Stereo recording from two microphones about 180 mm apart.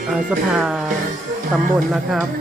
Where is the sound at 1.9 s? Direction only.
Centre (ahead or behind).